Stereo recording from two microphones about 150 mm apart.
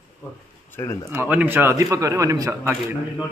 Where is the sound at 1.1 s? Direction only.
15° right (ahead or behind).